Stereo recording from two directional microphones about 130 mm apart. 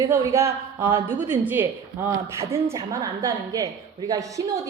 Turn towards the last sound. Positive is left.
turn(degrees=-25)  # may be behind; listen again after turning